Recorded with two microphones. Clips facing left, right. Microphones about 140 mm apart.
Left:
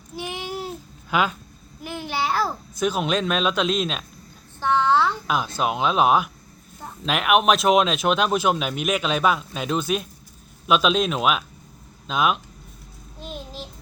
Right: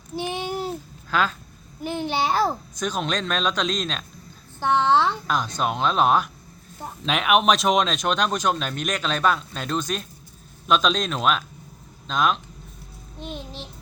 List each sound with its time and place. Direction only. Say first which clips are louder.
0.2 s babbling: right 3 dB; 30° right (ahead or behind)
1.1 s speech: left 1 dB; 10° left (ahead or behind)
1.8 s a child's voice: right 3 dB; 25° right (ahead or behind)
2.7 s speech: left 4 dB; 5° left (ahead or behind)
4.6 s a sound: even; 20° right (ahead or behind)
5.5 s speech: left 1 dB; 5° left (ahead or behind)
13.1 s child singing: even; 5° left (ahead or behind)